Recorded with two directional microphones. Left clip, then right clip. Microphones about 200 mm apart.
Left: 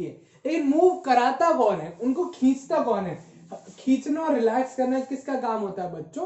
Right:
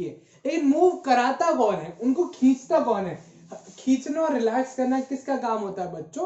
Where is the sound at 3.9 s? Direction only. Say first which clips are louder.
Even; 30° right (ahead or behind).